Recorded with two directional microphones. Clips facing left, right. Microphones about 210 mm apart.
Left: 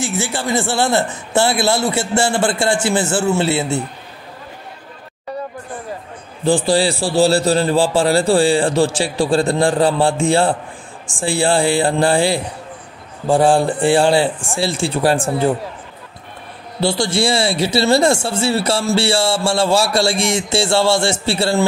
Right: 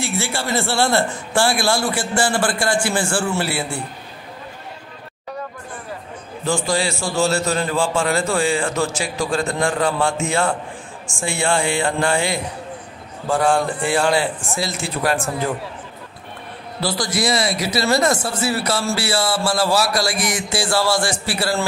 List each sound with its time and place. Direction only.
0.0 s speech: 15° left (ahead or behind)
6.4 s a man's voice: 35° left (ahead or behind)
16.8 s speech: 25° left (ahead or behind)